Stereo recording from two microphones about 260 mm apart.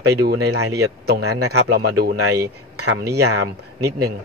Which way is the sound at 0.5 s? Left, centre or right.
Right.